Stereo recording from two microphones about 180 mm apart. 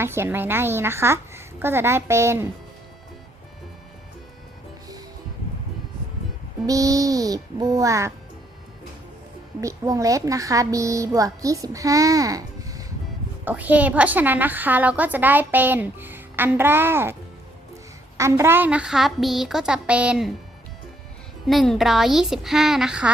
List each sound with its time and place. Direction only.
0.0 s a woman's voice: 15° right (ahead or behind)
6.7 s a woman's voice: 20° right (ahead or behind)
9.6 s a woman's voice: 20° right (ahead or behind)
13.4 s a woman's voice: 10° right (ahead or behind)
18.2 s a woman's voice: 15° right (ahead or behind)
21.4 s a woman's voice: centre (ahead or behind)